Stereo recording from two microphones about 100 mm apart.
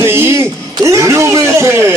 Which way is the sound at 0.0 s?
25° right (ahead or behind).